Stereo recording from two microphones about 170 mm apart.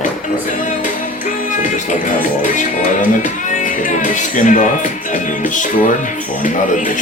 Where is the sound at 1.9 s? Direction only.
50° left (ahead or behind).